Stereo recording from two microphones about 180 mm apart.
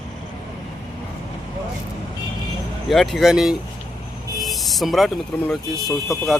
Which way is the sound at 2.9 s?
Centre (ahead or behind).